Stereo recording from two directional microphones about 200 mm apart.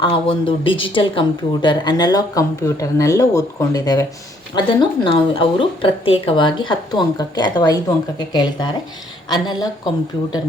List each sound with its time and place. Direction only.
0.0 s a woman's voice: 25° left (ahead or behind)